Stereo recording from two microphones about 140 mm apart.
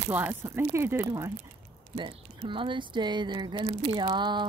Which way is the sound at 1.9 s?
40° right (ahead or behind).